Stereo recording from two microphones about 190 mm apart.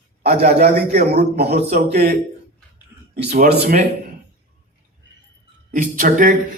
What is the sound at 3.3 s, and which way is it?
Speech, 50° right (ahead or behind).